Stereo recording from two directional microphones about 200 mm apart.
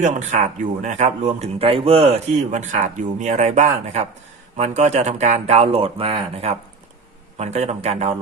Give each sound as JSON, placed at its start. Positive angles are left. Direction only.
{"t": 0.0, "sound": "a man's voice", "side_deg": -35}